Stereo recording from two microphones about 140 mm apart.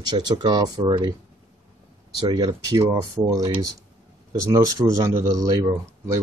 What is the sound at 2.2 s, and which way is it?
Speech, 30° right (ahead or behind).